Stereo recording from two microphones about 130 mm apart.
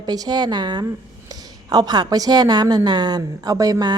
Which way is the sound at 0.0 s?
30° right (ahead or behind).